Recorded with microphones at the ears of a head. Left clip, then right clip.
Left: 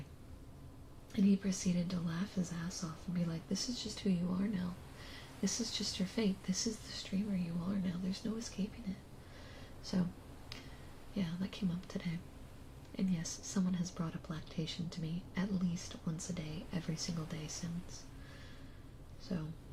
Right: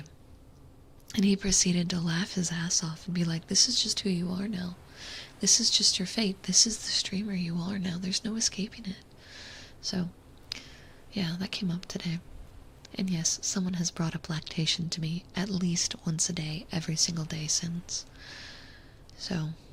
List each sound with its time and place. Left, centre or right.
1.1 s speech: right
9.3 s a sound: right
11.1 s speech: right